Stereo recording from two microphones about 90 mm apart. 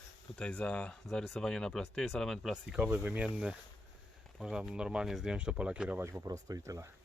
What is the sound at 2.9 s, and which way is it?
Speech, 20° right (ahead or behind).